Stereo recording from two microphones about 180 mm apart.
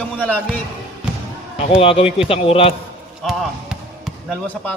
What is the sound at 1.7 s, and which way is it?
A man's voice, 30° left (ahead or behind).